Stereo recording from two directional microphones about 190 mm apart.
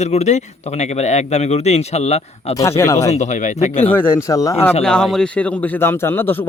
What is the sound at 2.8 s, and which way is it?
Speech, 15° left (ahead or behind).